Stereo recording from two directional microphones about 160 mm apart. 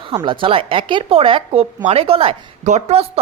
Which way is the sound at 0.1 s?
30° right (ahead or behind).